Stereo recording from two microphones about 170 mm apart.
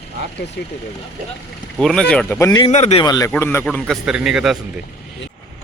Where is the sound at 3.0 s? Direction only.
25° left (ahead or behind).